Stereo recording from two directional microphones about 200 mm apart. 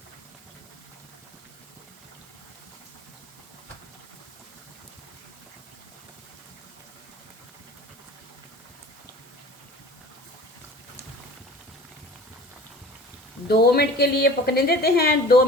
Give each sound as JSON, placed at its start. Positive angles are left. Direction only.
{"t": 13.5, "sound": "a woman's voice", "side_deg": 50}